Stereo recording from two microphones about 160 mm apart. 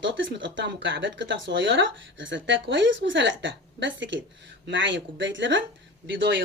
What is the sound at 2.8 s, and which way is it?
Speech, 90° right.